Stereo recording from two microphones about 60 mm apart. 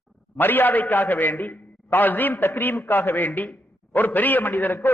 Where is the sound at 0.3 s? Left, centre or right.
Left.